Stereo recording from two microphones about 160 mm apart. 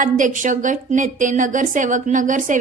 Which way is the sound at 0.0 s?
55° right (ahead or behind).